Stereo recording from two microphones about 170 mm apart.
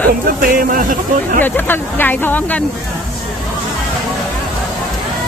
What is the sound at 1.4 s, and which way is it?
Speech, 10° left (ahead or behind).